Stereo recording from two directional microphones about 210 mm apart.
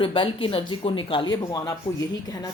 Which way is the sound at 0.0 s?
25° left (ahead or behind).